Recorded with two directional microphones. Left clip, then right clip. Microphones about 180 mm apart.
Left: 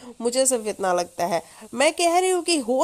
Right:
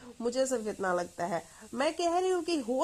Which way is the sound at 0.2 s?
30° left (ahead or behind).